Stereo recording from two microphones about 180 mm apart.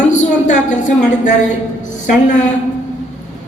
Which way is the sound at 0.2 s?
40° left (ahead or behind).